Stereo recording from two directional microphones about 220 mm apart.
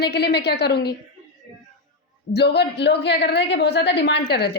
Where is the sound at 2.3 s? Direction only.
50° left (ahead or behind).